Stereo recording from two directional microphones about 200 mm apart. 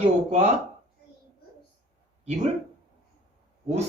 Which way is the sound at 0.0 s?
35° right (ahead or behind).